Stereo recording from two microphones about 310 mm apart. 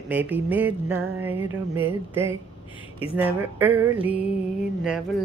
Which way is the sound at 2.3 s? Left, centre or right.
Centre.